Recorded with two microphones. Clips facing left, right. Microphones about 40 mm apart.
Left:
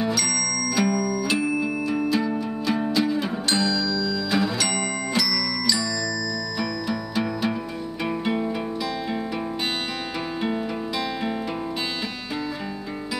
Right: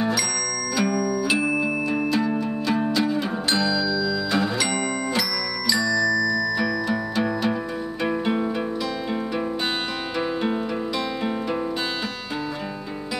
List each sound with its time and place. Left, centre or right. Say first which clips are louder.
0.7 s music: right 1 dB; centre
6.0 s music: right 7 dB; right
6.6 s music: right 3 dB; centre